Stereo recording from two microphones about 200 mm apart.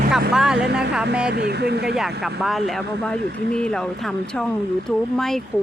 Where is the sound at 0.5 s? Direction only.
55° right (ahead or behind).